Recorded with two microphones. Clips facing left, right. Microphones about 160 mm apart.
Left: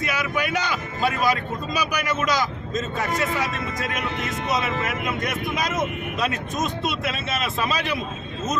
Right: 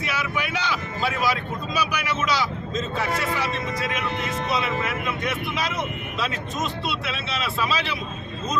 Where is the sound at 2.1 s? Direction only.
45° left (ahead or behind).